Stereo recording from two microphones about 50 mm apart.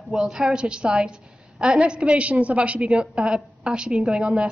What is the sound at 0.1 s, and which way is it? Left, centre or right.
A woman's voice, centre.